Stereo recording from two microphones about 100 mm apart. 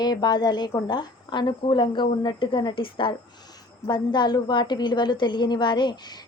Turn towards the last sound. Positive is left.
turn(degrees=45)  # may be behind; listen again after turning